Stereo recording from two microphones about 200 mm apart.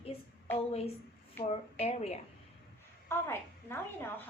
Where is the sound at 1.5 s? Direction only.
30° left (ahead or behind).